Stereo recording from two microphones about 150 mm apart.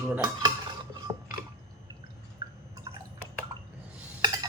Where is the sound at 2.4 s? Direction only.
25° right (ahead or behind).